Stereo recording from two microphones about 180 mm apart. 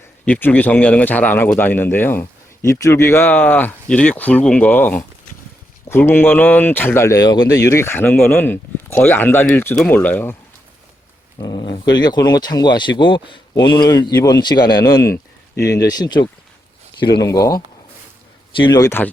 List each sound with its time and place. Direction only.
0.3 s speech: 10° left (ahead or behind)
11.3 s speech: 25° left (ahead or behind)